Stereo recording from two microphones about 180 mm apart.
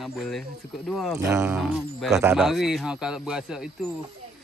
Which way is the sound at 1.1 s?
15° right (ahead or behind).